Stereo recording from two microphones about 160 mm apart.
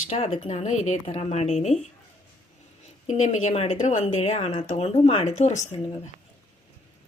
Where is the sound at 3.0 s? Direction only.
45° left (ahead or behind).